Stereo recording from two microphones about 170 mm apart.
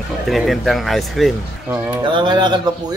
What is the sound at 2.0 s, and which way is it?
Speech, 30° right (ahead or behind).